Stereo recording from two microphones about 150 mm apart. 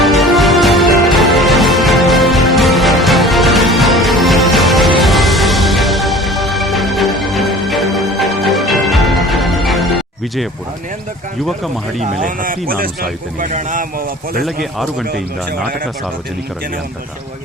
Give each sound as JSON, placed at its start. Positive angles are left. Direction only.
{"t": 0.0, "sound": "music", "side_deg": 0}
{"t": 11.9, "sound": "speech", "side_deg": -60}
{"t": 13.5, "sound": "a man's voice", "side_deg": -60}
{"t": 14.4, "sound": "speech", "side_deg": 0}